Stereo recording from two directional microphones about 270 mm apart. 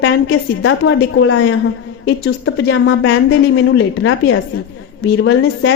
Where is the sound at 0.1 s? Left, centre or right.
Left.